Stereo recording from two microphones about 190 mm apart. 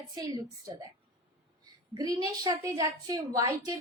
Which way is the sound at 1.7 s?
20° right (ahead or behind).